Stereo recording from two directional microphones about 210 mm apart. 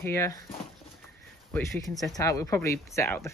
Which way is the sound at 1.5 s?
15° left (ahead or behind).